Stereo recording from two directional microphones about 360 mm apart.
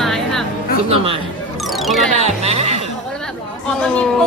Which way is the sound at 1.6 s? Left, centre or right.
Centre.